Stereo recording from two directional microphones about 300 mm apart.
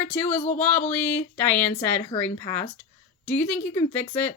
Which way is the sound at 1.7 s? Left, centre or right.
Centre.